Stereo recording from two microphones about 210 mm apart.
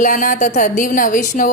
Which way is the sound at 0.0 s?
40° left (ahead or behind).